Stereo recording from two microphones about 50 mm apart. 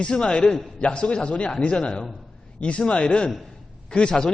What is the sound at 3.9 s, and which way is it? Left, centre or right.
Speech, centre.